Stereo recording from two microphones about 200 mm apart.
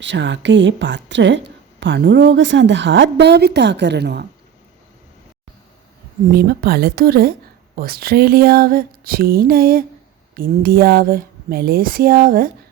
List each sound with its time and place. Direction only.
0.0 s a woman's voice: 65° right (ahead or behind)
6.3 s speech: 50° right (ahead or behind)